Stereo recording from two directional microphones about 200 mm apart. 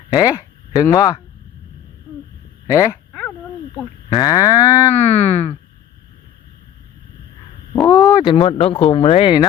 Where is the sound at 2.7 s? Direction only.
15° left (ahead or behind).